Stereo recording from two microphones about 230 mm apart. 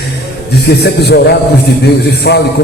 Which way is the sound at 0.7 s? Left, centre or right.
Left.